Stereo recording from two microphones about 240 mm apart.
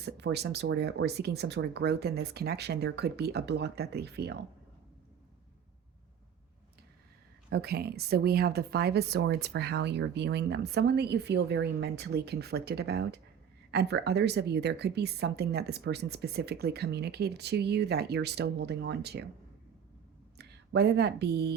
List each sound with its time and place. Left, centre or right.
0.0 s speech: right
7.5 s speech: right
20.4 s speech: right